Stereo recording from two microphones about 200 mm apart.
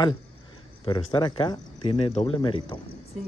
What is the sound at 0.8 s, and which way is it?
Speech, 25° left (ahead or behind).